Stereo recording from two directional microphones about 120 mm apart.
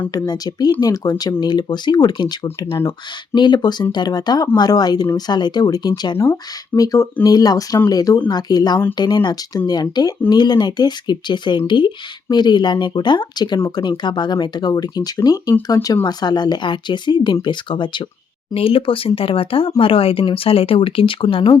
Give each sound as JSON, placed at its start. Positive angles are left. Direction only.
{"t": 0.1, "sound": "speech", "side_deg": 35}